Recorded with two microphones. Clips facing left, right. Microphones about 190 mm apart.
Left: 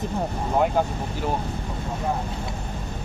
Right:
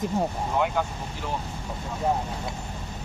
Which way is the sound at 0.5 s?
40° left (ahead or behind).